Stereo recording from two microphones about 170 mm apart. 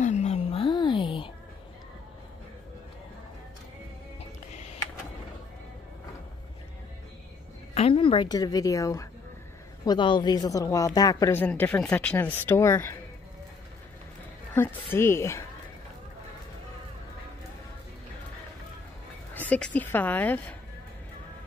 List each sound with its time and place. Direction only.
0.0 s a sound: 40° left (ahead or behind)
7.7 s a woman's voice: 35° left (ahead or behind); by 12.9 s 15° left (ahead or behind)
14.5 s speech: 10° left (ahead or behind)
19.3 s speech: 10° left (ahead or behind)